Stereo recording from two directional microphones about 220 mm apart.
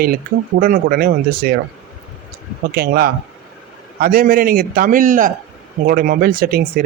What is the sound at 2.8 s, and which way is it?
Speech, 45° right (ahead or behind).